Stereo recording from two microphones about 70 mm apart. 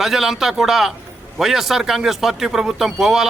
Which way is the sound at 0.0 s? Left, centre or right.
Centre.